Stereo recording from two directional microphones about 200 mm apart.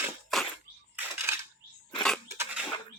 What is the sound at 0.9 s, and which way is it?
Dishes, 10° right (ahead or behind).